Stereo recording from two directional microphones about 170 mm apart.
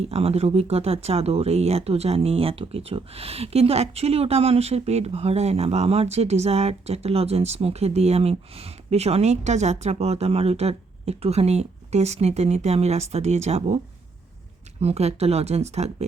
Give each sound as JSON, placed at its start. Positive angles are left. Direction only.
{"t": 0.0, "sound": "speech", "side_deg": -35}
{"t": 14.8, "sound": "speech", "side_deg": -40}